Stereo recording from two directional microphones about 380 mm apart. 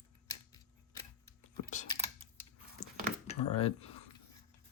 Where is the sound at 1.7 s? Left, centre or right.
Centre.